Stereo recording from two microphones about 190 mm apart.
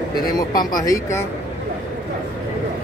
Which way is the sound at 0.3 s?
20° left (ahead or behind).